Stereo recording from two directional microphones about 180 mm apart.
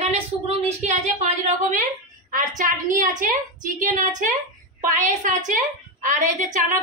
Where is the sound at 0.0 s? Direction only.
35° right (ahead or behind).